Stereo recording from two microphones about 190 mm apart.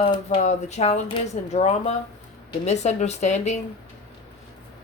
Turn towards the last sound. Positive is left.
turn(degrees=35)  # may be behind; listen again after turning